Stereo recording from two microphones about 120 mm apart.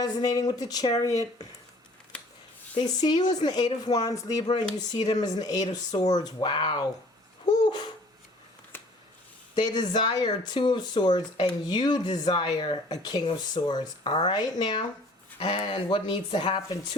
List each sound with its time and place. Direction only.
0.0 s speech: 30° left (ahead or behind)
2.7 s speech: 35° left (ahead or behind)
7.4 s babbling: 35° left (ahead or behind)
8.7 s a sound: 20° left (ahead or behind)
9.6 s speech: 35° left (ahead or behind)